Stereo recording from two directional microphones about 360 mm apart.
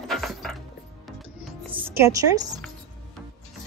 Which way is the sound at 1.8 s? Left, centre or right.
Centre.